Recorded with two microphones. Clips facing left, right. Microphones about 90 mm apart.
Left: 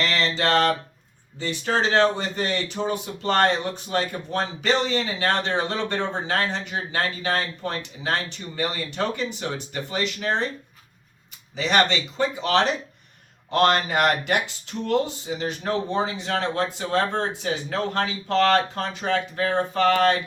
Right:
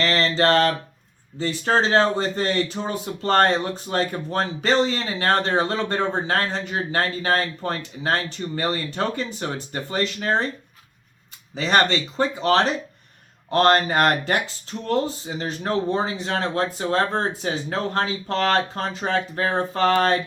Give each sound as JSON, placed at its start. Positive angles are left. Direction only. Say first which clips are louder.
{"t": 0.0, "sound": "a sound", "louder": "right 3 dB", "side_deg": -40}
{"t": 0.3, "sound": "speech", "louder": "right 2 dB", "side_deg": -40}
{"t": 11.5, "sound": "speech", "louder": "right 1 dB", "side_deg": -40}